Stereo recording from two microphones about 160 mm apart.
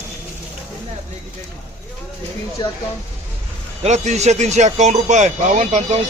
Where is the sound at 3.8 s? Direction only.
45° right (ahead or behind).